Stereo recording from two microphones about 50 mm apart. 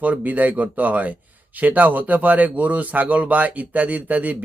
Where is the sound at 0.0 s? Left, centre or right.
Right.